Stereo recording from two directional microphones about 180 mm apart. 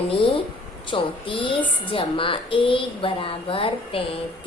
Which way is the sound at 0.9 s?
30° left (ahead or behind).